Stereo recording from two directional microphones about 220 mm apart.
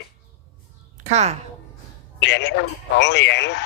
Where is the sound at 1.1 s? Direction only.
30° right (ahead or behind).